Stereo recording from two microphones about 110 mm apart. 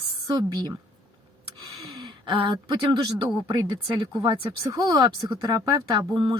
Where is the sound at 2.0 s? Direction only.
45° right (ahead or behind).